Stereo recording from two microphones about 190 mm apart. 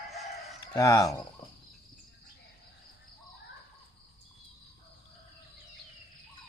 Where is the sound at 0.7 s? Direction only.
15° left (ahead or behind).